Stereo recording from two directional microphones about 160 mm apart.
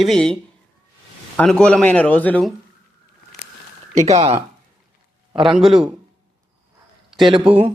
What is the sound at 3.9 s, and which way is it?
Speech, 40° right (ahead or behind).